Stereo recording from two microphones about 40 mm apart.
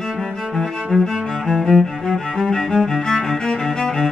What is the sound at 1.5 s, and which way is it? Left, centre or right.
Music, centre.